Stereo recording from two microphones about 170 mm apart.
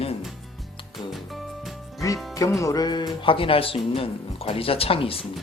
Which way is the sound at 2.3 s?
20° left (ahead or behind).